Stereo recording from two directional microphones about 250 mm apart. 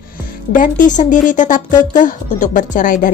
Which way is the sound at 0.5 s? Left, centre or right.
Left.